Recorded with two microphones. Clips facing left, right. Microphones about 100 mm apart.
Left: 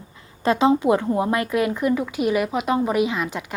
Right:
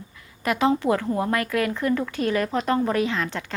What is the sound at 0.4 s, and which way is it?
Speech, 25° left (ahead or behind).